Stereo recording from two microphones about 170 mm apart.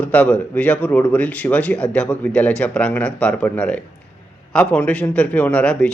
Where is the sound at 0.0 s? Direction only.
10° left (ahead or behind).